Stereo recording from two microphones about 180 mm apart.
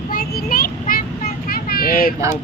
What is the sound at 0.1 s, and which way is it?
Child singing, 55° left (ahead or behind).